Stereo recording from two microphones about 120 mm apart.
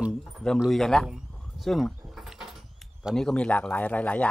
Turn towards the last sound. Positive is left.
turn(degrees=10)  # may be behind; listen again after turning